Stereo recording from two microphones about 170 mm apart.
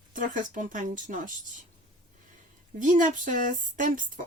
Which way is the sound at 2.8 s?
50° right (ahead or behind).